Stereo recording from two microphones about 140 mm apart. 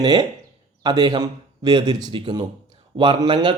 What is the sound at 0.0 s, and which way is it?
Speech, 30° right (ahead or behind).